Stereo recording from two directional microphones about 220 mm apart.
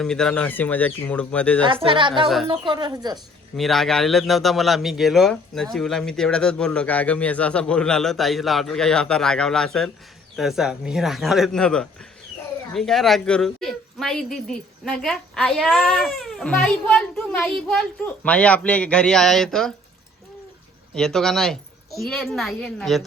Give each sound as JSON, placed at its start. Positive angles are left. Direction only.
{"t": 0.0, "sound": "speech", "side_deg": 5}
{"t": 1.6, "sound": "speech", "side_deg": -25}
{"t": 2.2, "sound": "speech", "side_deg": 0}
{"t": 2.5, "sound": "speech", "side_deg": -20}
{"t": 3.6, "sound": "speech", "side_deg": 0}
{"t": 20.9, "sound": "speech", "side_deg": 0}